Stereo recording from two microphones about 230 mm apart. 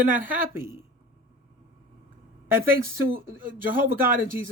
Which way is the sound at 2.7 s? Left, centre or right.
Right.